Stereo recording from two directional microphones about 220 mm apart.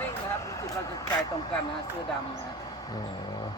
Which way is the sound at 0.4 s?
15° left (ahead or behind).